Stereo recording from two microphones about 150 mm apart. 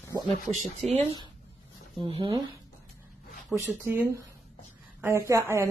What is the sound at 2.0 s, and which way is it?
Speech, 35° right (ahead or behind).